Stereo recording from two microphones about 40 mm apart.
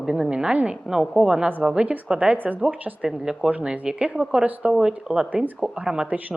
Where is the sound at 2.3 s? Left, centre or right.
Right.